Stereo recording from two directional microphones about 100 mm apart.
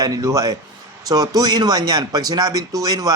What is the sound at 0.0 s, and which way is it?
Speech, 35° right (ahead or behind).